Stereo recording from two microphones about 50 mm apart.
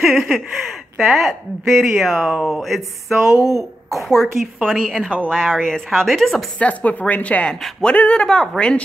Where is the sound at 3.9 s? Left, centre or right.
Centre.